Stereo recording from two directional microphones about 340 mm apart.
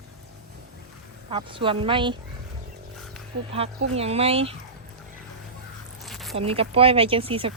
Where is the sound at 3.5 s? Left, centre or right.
Centre.